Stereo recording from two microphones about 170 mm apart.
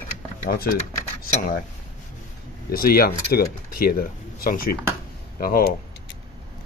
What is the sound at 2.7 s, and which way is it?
Speech, 60° left (ahead or behind).